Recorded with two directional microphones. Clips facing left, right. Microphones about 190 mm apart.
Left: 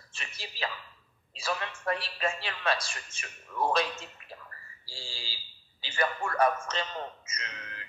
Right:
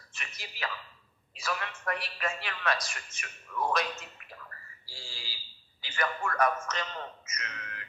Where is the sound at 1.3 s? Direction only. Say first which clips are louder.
Left 2 dB; 30° left (ahead or behind).